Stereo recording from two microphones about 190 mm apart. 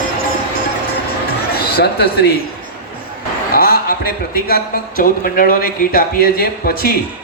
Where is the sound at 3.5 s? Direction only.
50° left (ahead or behind).